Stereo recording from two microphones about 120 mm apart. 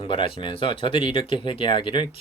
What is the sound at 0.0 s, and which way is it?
Speech, 45° left (ahead or behind).